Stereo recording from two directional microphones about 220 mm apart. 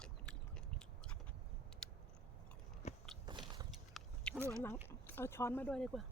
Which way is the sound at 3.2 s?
20° right (ahead or behind).